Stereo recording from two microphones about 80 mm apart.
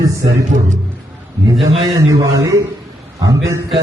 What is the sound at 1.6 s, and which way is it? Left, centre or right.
A man's voice, right.